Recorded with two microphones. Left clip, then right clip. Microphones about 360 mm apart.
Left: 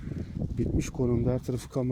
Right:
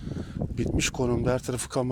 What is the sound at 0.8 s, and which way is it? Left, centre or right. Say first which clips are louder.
Speech: right 4 dB; right.